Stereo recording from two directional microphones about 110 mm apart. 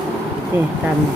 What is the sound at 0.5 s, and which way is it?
Speech, 20° right (ahead or behind).